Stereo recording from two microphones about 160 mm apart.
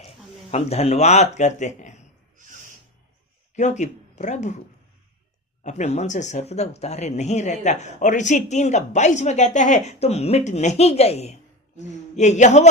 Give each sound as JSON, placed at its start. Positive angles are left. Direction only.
{"t": 0.5, "sound": "speech", "side_deg": 40}
{"t": 3.5, "sound": "speech", "side_deg": 45}
{"t": 5.6, "sound": "speech", "side_deg": 45}